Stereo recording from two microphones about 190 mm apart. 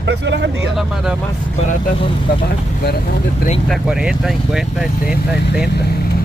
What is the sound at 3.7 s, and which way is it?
Speech, 5° right (ahead or behind).